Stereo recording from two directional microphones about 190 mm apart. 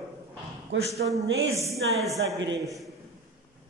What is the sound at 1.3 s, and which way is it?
Speech, 90° right.